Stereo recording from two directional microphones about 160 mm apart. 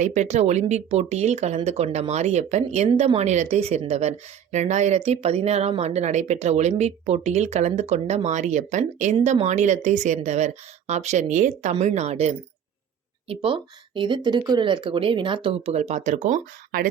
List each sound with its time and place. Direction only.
0.0 s speech: 50° right (ahead or behind)